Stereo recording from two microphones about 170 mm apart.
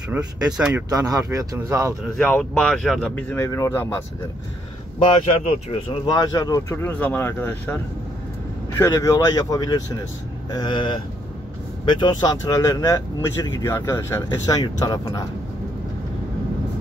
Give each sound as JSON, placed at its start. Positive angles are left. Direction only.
{"t": 0.1, "sound": "speech", "side_deg": -5}
{"t": 0.8, "sound": "speech", "side_deg": -20}
{"t": 2.1, "sound": "speech", "side_deg": 5}
{"t": 3.2, "sound": "speech", "side_deg": 15}
{"t": 4.9, "sound": "speech", "side_deg": 35}
{"t": 6.0, "sound": "speech", "side_deg": 20}